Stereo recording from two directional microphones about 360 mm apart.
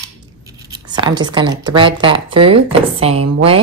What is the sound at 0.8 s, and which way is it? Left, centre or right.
Speech, centre.